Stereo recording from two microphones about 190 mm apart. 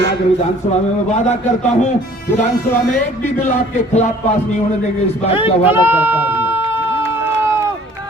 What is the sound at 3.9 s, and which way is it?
Speech, 35° left (ahead or behind).